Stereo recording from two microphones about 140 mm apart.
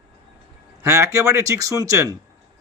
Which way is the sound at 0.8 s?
20° right (ahead or behind).